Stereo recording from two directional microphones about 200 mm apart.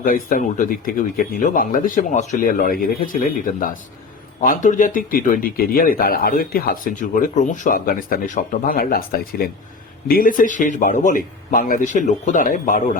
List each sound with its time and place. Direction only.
0.0 s a man's voice: 45° left (ahead or behind)